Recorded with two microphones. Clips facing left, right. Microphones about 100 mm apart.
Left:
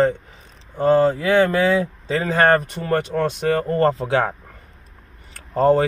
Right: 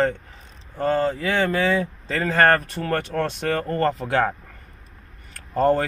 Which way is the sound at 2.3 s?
15° left (ahead or behind).